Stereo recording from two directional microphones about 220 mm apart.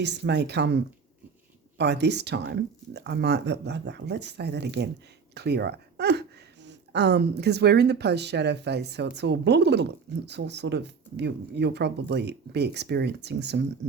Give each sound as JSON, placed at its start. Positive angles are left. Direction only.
{"t": 0.0, "sound": "speech", "side_deg": -50}
{"t": 1.8, "sound": "speech", "side_deg": -50}